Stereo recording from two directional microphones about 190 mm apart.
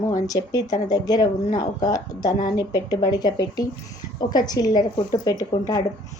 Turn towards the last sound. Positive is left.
turn(degrees=20)  # may be behind; listen again after turning